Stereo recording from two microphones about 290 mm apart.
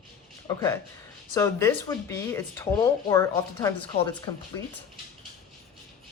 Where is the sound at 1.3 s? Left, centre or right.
Centre.